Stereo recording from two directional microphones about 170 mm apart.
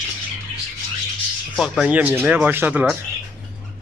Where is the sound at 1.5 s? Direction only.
Centre (ahead or behind).